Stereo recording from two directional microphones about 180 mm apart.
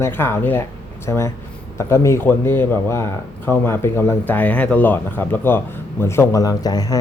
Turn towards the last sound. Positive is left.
turn(degrees=20)  # may be behind; listen again after turning